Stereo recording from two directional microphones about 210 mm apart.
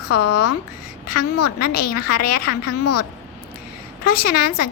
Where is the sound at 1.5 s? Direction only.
45° left (ahead or behind).